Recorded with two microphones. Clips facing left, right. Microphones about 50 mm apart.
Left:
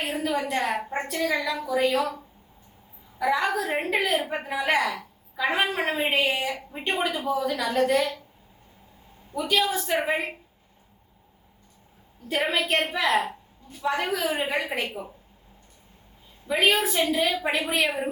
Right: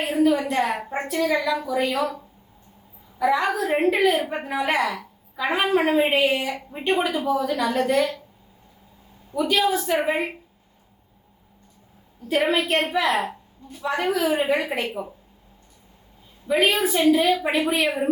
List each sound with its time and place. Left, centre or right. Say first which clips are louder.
0.0 s a woman's voice: right 7 dB; centre
3.2 s a woman's voice: right 3 dB; centre
9.3 s a woman's voice: right 3 dB; centre
12.3 s a woman's voice: right 4 dB; centre
13.1 s a woman's voice: right 1 dB; centre
13.7 s a woman's voice: right 2 dB; centre
16.5 s a woman's voice: right 2 dB; centre